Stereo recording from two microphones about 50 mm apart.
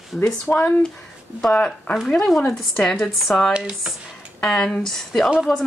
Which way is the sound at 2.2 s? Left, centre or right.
Centre.